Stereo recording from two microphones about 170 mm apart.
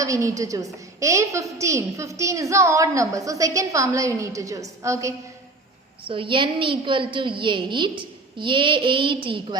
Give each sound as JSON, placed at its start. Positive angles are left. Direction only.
{"t": 0.0, "sound": "a woman's voice", "side_deg": -20}
{"t": 6.1, "sound": "a woman's voice", "side_deg": -30}